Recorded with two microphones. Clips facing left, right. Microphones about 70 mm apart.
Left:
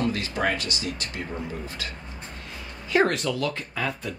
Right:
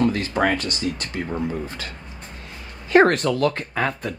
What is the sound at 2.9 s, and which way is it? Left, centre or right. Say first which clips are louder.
Speech: right 7 dB; right.